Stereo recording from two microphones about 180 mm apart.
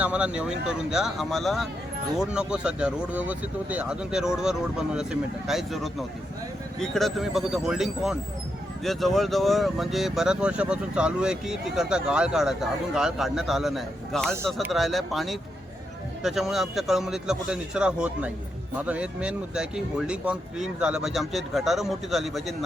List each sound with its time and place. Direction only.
0.0 s speech: 5° right (ahead or behind)